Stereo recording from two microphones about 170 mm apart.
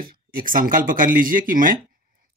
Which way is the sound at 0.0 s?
55° right (ahead or behind).